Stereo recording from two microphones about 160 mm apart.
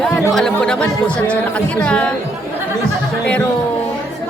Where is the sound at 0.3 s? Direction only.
5° left (ahead or behind).